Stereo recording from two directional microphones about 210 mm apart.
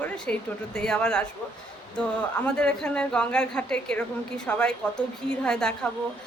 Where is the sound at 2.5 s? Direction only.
5° left (ahead or behind).